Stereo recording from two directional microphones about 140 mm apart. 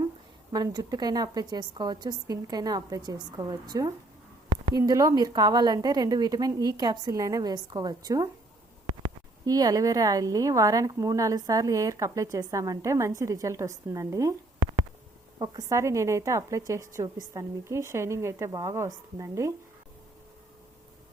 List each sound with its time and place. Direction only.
0.5 s a woman's voice: 30° right (ahead or behind)
4.4 s a sound: 35° right (ahead or behind)
4.8 s a woman's voice: 25° right (ahead or behind)
9.5 s a woman's voice: 25° right (ahead or behind)
15.4 s a woman's voice: 25° right (ahead or behind)